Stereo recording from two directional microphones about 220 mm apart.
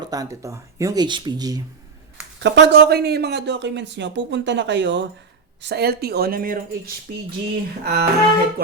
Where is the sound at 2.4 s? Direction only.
50° right (ahead or behind).